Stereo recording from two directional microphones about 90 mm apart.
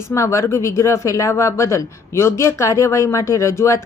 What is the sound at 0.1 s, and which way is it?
Speech, 35° left (ahead or behind).